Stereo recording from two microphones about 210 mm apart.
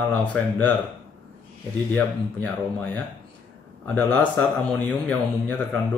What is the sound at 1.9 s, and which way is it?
Speech, 10° left (ahead or behind).